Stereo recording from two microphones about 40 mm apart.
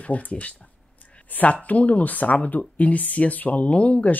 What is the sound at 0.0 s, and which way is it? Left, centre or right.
Speech, left.